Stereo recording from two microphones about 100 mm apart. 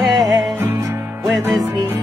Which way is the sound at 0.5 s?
20° right (ahead or behind).